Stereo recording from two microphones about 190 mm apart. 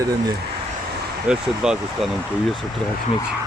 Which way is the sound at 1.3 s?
5° right (ahead or behind).